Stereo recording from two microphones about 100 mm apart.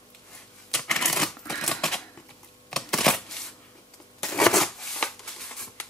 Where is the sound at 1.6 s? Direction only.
5° left (ahead or behind).